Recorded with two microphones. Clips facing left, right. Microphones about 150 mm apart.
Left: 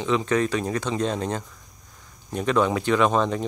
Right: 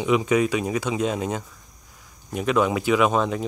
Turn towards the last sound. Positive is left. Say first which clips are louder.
# even
turn(degrees=-5)  # may be behind; listen again after turning